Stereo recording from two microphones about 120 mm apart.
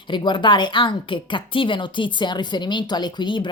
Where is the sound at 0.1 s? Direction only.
40° left (ahead or behind).